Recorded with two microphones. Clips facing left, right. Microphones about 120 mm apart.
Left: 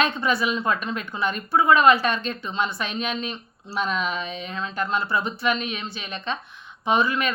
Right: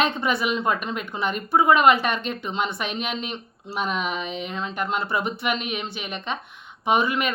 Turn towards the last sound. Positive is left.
turn(degrees=-20)  # may be behind; listen again after turning